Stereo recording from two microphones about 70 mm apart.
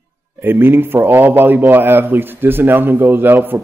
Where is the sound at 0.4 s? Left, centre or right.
Right.